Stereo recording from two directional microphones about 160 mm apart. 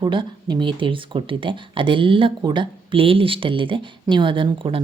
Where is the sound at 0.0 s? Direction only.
30° right (ahead or behind).